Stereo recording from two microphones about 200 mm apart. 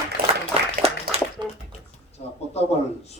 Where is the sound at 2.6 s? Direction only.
30° left (ahead or behind).